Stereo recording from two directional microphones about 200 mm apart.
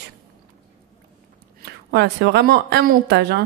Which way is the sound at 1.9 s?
55° right (ahead or behind).